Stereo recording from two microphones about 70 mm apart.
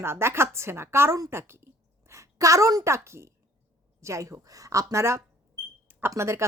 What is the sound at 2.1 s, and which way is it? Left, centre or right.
A woman's voice, right.